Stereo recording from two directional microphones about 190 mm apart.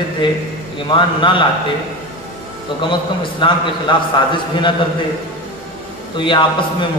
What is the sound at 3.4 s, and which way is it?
Speech, 25° left (ahead or behind).